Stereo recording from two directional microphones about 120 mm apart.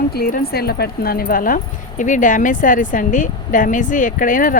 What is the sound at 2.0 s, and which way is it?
Speech, 90° left.